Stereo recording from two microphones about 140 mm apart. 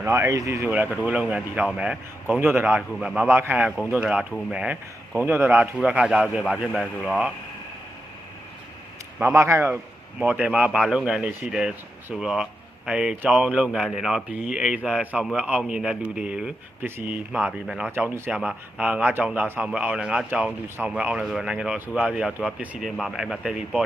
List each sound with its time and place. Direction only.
0.0 s speech: 15° right (ahead or behind); by 7.3 s centre (ahead or behind)
9.3 s speech: 20° right (ahead or behind); by 17.8 s 5° right (ahead or behind)
17.9 s speech: 15° right (ahead or behind)